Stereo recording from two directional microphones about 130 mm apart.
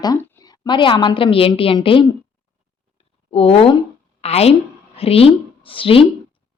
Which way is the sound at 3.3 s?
50° left (ahead or behind).